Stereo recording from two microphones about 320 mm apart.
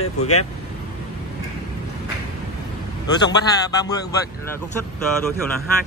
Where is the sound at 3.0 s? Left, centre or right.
Centre.